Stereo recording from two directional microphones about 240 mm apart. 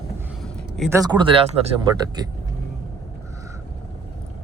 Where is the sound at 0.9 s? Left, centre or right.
Centre.